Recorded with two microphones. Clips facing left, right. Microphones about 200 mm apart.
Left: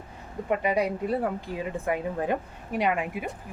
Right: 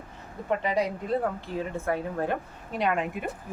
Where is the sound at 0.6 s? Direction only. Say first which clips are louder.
Left 2 dB; 10° left (ahead or behind).